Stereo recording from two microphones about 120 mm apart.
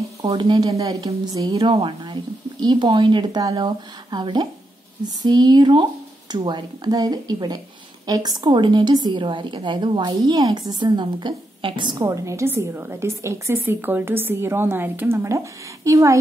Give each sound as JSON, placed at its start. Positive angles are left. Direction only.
{"t": 0.3, "sound": "speech", "side_deg": -50}
{"t": 0.6, "sound": "a woman's voice", "side_deg": -30}
{"t": 1.6, "sound": "a woman's voice", "side_deg": -40}
{"t": 12.0, "sound": "a woman's voice", "side_deg": -25}